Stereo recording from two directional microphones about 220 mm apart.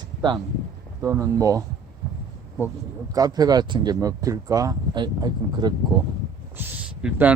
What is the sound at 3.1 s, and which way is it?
Speech, 15° right (ahead or behind).